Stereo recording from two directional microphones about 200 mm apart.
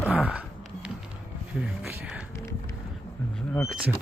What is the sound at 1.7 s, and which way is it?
Speech, 5° right (ahead or behind).